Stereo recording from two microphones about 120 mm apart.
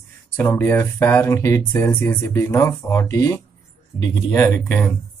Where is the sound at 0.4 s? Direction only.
15° left (ahead or behind).